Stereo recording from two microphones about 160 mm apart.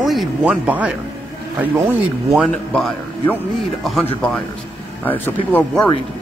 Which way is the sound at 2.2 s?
Centre (ahead or behind).